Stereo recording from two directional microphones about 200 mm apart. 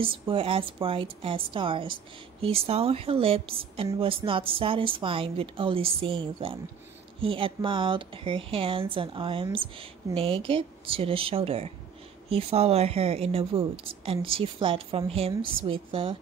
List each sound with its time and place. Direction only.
0.0 s speech: 25° right (ahead or behind)